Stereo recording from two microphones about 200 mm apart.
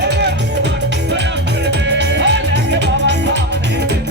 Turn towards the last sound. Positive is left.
turn(degrees=-60)  # may be behind; listen again after turning